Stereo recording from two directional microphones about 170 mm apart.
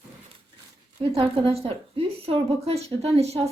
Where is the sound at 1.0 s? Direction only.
30° right (ahead or behind).